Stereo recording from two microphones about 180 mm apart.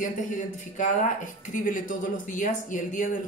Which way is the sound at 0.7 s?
45° left (ahead or behind).